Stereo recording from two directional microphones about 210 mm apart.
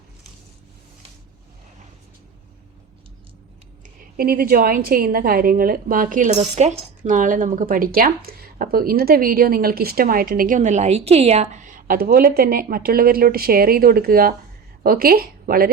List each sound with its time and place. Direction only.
4.2 s speech: 45° right (ahead or behind)